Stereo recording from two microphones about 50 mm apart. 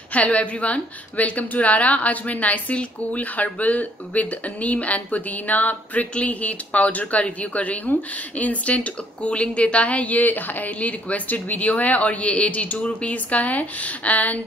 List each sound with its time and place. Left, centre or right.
0.1 s a woman's voice: left